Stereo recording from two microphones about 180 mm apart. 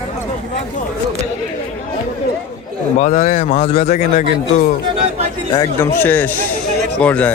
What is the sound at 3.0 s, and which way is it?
A man's voice, 35° left (ahead or behind).